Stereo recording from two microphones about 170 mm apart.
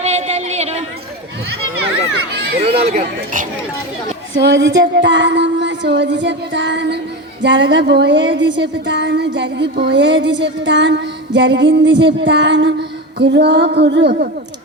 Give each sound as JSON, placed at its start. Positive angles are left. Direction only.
{"t": 0.0, "sound": "a sound", "side_deg": -40}
{"t": 2.8, "sound": "a man's voice", "side_deg": -55}
{"t": 4.4, "sound": "a woman's voice", "side_deg": -90}